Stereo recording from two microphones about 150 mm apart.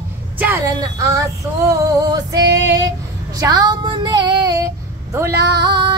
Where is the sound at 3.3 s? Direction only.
25° right (ahead or behind).